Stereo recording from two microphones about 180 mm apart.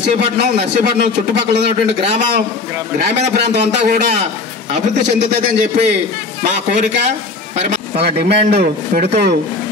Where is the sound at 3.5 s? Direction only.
45° right (ahead or behind).